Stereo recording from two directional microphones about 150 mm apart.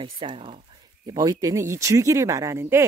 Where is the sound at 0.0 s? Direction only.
35° right (ahead or behind).